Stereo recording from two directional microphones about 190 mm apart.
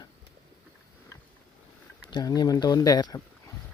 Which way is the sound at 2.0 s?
20° left (ahead or behind).